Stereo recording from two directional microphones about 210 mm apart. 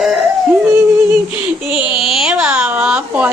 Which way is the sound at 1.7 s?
Centre (ahead or behind).